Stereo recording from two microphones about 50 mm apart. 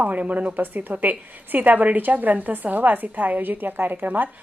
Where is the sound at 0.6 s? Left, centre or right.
Right.